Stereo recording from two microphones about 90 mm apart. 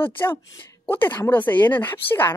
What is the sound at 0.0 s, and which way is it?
Speech, 25° left (ahead or behind).